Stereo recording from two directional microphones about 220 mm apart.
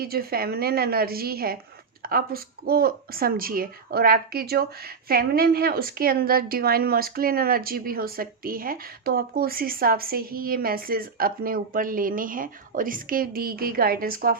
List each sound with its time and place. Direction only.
0.0 s a woman's voice: 45° right (ahead or behind)